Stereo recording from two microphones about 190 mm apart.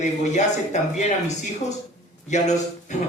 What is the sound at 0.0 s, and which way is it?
Speech, 40° left (ahead or behind).